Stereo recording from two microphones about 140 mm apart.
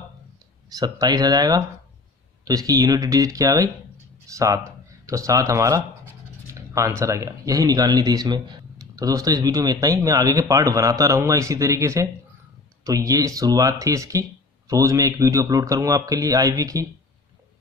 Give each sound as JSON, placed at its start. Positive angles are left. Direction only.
{"t": 0.7, "sound": "speech", "side_deg": -25}